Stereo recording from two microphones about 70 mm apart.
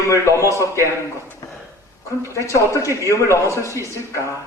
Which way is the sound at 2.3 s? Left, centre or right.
Left.